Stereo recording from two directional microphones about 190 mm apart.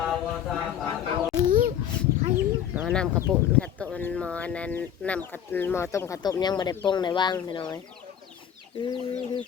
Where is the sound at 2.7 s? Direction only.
10° right (ahead or behind).